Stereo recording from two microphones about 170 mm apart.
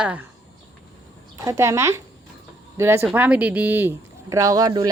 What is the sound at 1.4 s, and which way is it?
A woman's voice, 15° right (ahead or behind).